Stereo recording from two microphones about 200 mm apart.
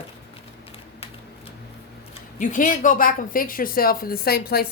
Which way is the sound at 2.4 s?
40° left (ahead or behind).